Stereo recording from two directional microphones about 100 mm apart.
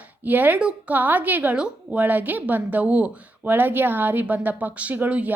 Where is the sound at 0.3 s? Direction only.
15° right (ahead or behind).